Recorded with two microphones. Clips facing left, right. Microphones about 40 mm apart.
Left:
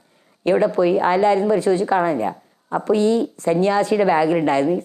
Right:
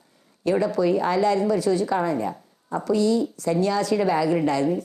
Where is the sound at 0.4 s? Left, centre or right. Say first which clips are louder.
Left 5 dB; left.